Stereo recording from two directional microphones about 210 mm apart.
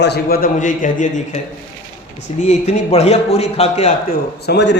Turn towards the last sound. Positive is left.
turn(degrees=55)  # may be behind; listen again after turning